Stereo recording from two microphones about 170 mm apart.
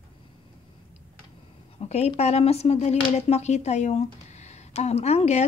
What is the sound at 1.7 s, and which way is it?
Speech, 40° left (ahead or behind).